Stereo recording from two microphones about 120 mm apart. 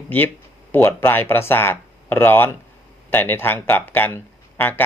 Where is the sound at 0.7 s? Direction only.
20° left (ahead or behind).